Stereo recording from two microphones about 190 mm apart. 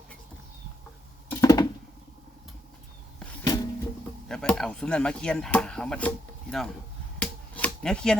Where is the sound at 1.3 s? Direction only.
20° left (ahead or behind).